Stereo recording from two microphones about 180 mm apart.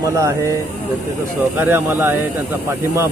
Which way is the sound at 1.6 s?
10° right (ahead or behind).